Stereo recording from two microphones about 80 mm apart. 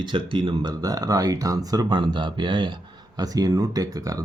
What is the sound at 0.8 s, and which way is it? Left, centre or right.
Speech, right.